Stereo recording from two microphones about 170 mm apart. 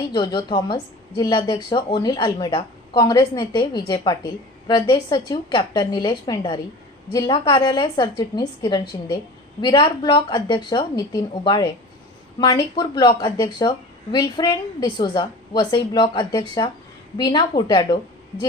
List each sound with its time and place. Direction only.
0.1 s a woman's voice: 25° left (ahead or behind)